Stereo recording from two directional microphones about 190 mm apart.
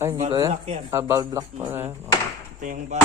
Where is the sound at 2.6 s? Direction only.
45° right (ahead or behind).